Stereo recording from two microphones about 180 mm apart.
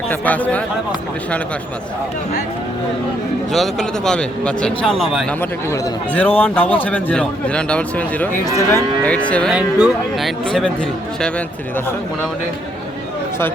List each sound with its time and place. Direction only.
0.1 s a man's voice: 10° left (ahead or behind)
3.5 s a man's voice: centre (ahead or behind)
5.4 s a man's voice: 15° left (ahead or behind)
8.4 s a man's voice: 20° left (ahead or behind)
9.3 s a man's voice: 5° left (ahead or behind)